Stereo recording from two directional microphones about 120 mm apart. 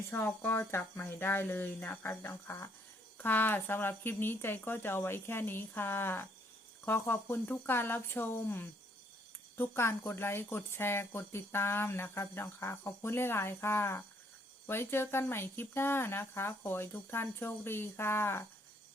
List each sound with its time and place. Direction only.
0.1 s a woman's voice: 15° left (ahead or behind)